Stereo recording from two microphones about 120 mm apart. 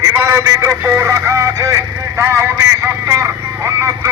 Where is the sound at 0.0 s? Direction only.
25° right (ahead or behind).